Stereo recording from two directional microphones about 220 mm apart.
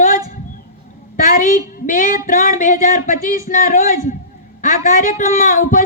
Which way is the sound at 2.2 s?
35° left (ahead or behind).